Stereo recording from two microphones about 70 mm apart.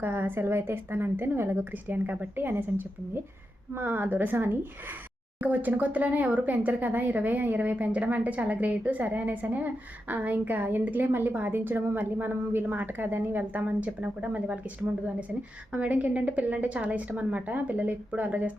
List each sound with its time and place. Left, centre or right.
0.0 s a woman's voice: right
15.7 s speech: right